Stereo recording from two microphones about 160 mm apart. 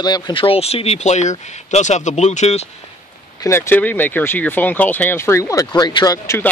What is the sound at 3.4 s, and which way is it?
Speech, 15° left (ahead or behind).